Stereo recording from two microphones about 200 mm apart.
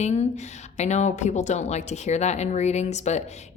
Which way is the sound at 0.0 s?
35° left (ahead or behind).